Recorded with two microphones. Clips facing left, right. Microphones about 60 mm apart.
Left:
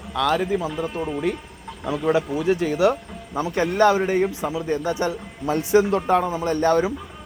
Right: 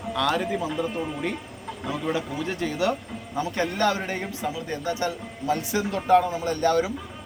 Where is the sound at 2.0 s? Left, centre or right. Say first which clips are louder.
Left 9 dB; centre.